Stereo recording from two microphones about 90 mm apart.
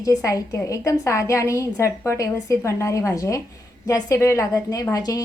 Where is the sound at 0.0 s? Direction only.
40° left (ahead or behind).